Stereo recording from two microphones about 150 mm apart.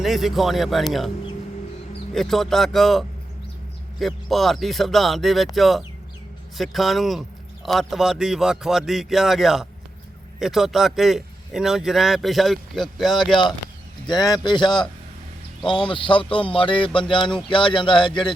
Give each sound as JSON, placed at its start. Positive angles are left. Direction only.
{"t": 0.0, "sound": "a man's voice", "side_deg": 0}
{"t": 2.1, "sound": "a man's voice", "side_deg": 0}
{"t": 14.1, "sound": "speech", "side_deg": 25}
{"t": 15.9, "sound": "speech", "side_deg": 35}